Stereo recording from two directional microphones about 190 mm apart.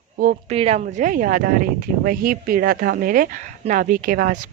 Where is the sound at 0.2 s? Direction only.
35° right (ahead or behind).